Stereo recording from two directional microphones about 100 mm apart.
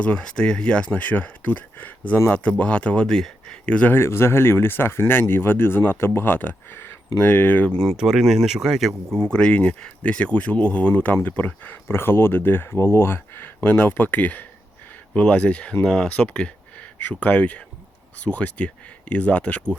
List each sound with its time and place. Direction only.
0.0 s speech: 10° left (ahead or behind)
7.9 s speech: 5° right (ahead or behind)
9.1 s speech: 10° left (ahead or behind)